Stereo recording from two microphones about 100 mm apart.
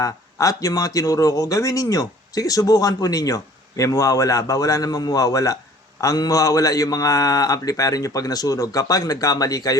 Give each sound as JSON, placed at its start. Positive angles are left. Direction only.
{"t": 0.0, "sound": "a man's voice", "side_deg": 35}